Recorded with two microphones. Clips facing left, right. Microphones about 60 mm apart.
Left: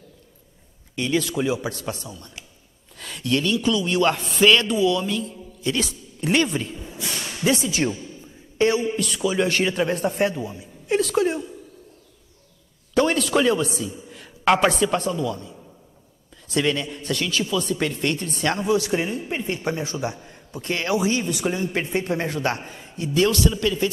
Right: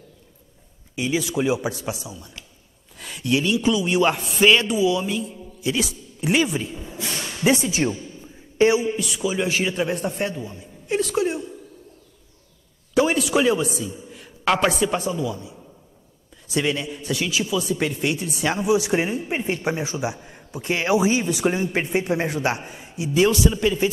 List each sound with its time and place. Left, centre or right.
0.9 s speech: centre
7.3 s a man's voice: right; by 11.4 s centre
12.9 s a man's voice: centre